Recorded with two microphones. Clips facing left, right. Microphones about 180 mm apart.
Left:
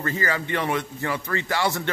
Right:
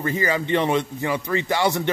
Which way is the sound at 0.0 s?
15° right (ahead or behind).